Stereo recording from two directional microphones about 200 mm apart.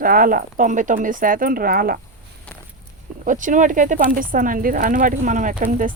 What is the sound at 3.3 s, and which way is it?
Speech, 40° right (ahead or behind).